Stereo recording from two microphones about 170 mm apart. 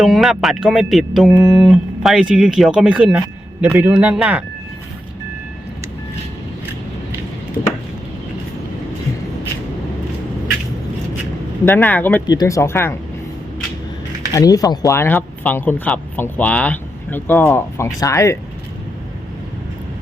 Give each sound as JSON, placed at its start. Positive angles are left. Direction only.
{"t": 0.0, "sound": "speech", "side_deg": 0}
{"t": 11.6, "sound": "speech", "side_deg": 10}
{"t": 12.2, "sound": "speech", "side_deg": 25}
{"t": 14.3, "sound": "speech", "side_deg": 20}